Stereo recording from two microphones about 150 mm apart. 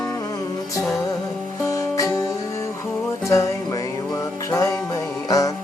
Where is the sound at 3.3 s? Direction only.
20° left (ahead or behind).